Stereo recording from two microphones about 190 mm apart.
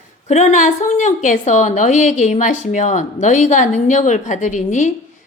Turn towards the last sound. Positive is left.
turn(degrees=40)  # may be behind; listen again after turning